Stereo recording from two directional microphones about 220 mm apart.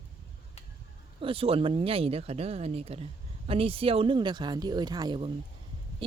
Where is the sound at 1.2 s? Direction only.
25° right (ahead or behind).